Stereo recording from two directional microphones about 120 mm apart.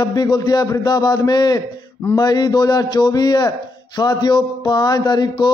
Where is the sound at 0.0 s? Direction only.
35° left (ahead or behind).